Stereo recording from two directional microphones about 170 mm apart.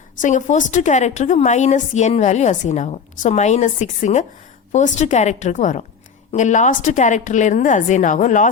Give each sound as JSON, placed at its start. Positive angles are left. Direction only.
{"t": 0.2, "sound": "a woman's voice", "side_deg": 45}